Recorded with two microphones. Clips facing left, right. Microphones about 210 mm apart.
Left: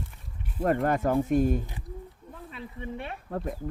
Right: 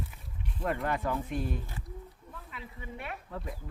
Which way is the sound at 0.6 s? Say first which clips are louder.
Left 7 dB; 45° left (ahead or behind).